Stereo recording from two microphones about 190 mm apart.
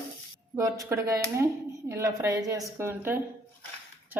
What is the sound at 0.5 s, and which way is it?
Speech, 15° right (ahead or behind).